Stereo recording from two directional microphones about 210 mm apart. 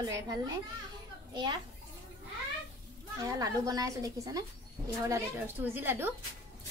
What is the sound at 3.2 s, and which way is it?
A child's voice, 15° right (ahead or behind).